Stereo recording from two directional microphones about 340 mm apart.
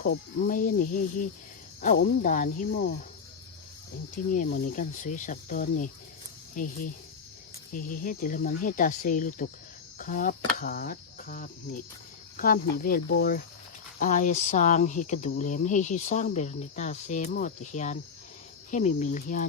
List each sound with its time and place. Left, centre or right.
0.0 s speech: left
4.3 s speech: left
8.0 s speech: left